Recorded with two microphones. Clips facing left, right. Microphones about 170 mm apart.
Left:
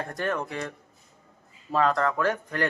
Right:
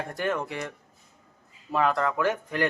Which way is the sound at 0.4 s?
20° right (ahead or behind).